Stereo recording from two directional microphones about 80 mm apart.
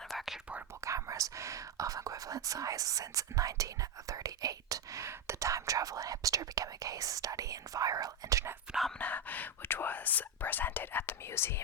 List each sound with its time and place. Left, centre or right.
0.1 s whispering: centre
0.9 s speech: right
9.0 s speech: centre